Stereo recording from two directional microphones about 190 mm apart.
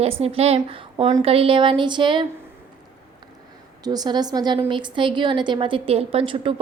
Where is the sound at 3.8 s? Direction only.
20° right (ahead or behind).